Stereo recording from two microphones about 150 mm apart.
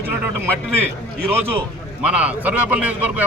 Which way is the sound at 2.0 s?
10° right (ahead or behind).